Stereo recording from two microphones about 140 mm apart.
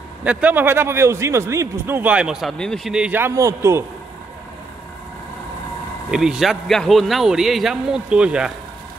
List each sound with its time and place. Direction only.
0.2 s speech: 10° right (ahead or behind)
6.0 s a man's voice: 5° right (ahead or behind)